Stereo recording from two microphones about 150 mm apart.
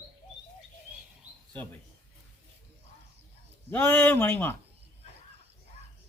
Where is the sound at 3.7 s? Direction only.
10° left (ahead or behind).